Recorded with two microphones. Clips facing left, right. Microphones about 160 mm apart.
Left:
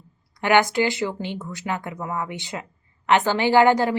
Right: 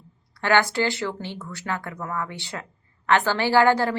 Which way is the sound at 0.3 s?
15° left (ahead or behind).